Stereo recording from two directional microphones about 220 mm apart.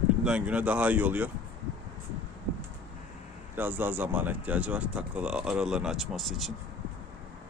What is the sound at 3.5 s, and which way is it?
Speech, 10° right (ahead or behind).